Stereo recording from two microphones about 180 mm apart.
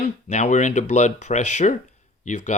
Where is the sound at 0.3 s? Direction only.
40° left (ahead or behind).